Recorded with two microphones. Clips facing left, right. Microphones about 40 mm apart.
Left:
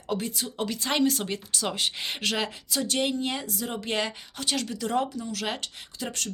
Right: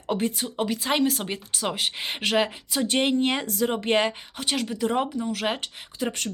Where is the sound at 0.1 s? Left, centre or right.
Right.